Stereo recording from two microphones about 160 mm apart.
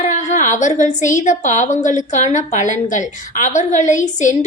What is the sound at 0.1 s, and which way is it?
A woman's voice, 50° left (ahead or behind).